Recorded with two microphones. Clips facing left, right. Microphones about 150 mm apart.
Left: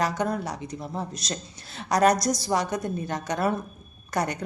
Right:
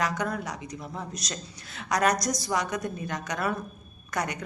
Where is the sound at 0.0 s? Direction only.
30° left (ahead or behind).